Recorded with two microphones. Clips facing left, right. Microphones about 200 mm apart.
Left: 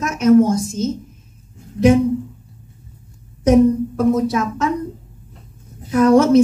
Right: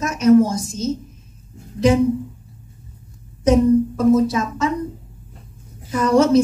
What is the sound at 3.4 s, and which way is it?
A woman's voice, 60° left (ahead or behind).